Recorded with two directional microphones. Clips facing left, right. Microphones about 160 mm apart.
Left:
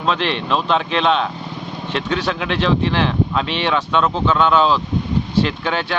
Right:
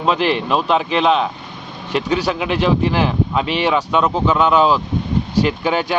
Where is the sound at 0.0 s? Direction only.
10° right (ahead or behind).